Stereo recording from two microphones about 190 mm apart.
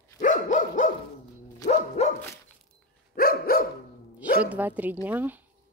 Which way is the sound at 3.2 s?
50° left (ahead or behind).